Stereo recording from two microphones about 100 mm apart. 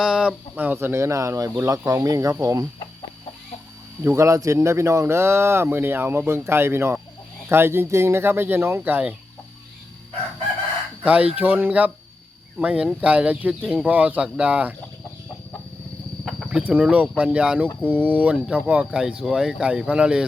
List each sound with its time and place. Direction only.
0.0 s speech: 10° right (ahead or behind); by 2.6 s 35° right (ahead or behind)
4.0 s speech: 30° right (ahead or behind)
11.0 s speech: 15° right (ahead or behind)
16.5 s speech: 10° right (ahead or behind)